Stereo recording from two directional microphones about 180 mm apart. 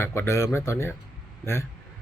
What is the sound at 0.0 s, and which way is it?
Speech, 15° left (ahead or behind).